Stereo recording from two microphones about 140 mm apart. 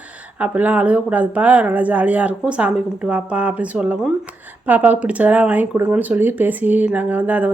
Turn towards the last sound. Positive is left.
turn(degrees=-10)  # may be behind; listen again after turning